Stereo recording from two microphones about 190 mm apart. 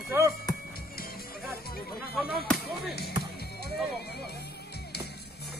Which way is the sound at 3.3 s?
55° left (ahead or behind).